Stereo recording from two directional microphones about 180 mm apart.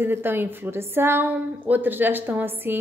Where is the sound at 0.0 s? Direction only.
10° right (ahead or behind).